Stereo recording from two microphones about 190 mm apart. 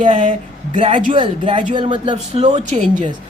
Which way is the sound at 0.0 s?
40° right (ahead or behind).